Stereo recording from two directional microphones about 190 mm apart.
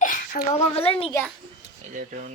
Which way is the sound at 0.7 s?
30° left (ahead or behind).